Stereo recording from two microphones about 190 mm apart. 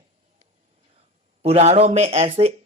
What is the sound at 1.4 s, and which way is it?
Speech, 35° right (ahead or behind).